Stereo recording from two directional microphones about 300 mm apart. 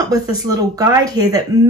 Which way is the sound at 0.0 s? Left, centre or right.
Centre.